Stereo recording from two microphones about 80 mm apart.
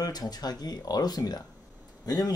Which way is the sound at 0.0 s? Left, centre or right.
Left.